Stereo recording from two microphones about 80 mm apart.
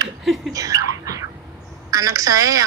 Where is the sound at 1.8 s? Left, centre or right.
Right.